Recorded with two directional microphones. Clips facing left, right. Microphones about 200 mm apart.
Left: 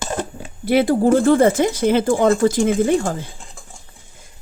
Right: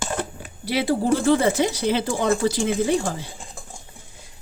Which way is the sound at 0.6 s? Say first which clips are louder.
Left 6 dB; 50° left (ahead or behind).